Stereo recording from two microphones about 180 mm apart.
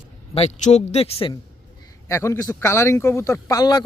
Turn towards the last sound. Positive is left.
turn(degrees=20)  # may be behind; listen again after turning